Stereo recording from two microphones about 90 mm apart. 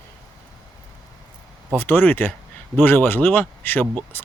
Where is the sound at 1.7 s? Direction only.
20° left (ahead or behind).